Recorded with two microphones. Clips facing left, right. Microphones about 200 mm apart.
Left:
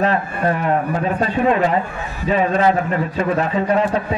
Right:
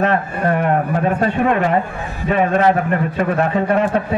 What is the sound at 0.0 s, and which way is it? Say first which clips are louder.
A man's voice: right 1 dB; 55° right (ahead or behind).